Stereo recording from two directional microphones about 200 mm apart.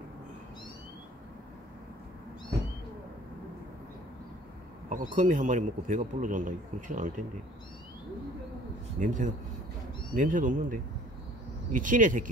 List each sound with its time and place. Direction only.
4.8 s speech: 35° right (ahead or behind)
9.0 s speech: 40° right (ahead or behind)